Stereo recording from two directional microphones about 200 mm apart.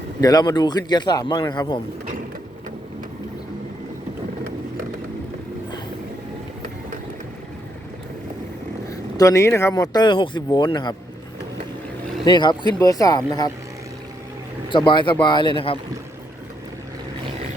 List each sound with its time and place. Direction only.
0.2 s speech: 20° left (ahead or behind)
8.9 s speech: 15° left (ahead or behind)
12.2 s speech: 20° left (ahead or behind)
14.7 s speech: 25° left (ahead or behind)